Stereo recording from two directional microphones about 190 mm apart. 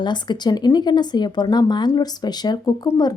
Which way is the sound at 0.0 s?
25° left (ahead or behind).